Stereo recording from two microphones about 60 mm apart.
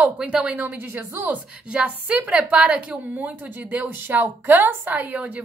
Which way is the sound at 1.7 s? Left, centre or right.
Centre.